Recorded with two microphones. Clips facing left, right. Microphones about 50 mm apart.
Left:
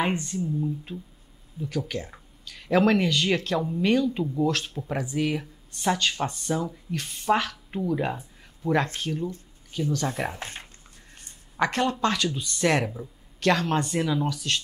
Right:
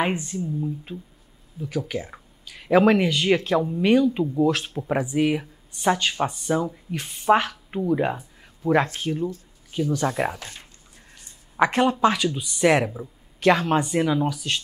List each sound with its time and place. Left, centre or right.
0.0 s speech: centre
10.0 s speech: right
10.4 s speech: left
11.5 s speech: centre